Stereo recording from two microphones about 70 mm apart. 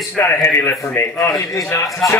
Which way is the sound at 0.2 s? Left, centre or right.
Left.